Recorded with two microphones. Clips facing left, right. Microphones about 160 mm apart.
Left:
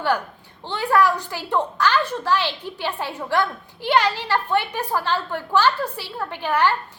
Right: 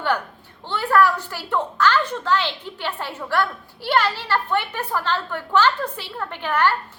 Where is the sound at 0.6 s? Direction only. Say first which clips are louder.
Right 1 dB; 15° left (ahead or behind).